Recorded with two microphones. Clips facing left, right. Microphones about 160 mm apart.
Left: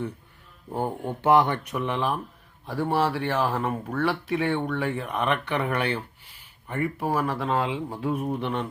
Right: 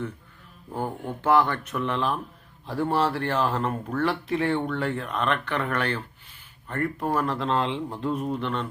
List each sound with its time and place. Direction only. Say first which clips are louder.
0.7 s speech: left 2 dB; 20° left (ahead or behind)